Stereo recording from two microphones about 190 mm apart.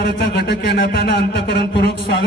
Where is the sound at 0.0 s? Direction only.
60° left (ahead or behind).